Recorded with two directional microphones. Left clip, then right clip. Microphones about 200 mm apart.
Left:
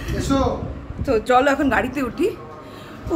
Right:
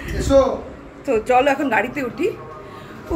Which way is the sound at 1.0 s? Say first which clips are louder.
Even; 5° left (ahead or behind).